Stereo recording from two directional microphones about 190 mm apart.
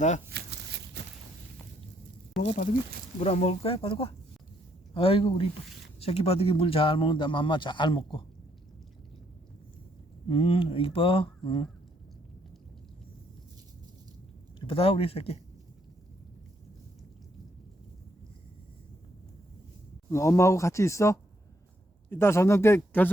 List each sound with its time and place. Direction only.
1.0 s walk: 65° right (ahead or behind)
3.2 s a man's voice: 35° left (ahead or behind)
10.2 s a man's voice: 30° left (ahead or behind)
14.6 s speech: 30° left (ahead or behind)
20.1 s speech: 15° left (ahead or behind)